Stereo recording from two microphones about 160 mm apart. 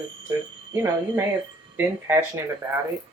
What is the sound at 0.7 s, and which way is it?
Speech, 15° right (ahead or behind).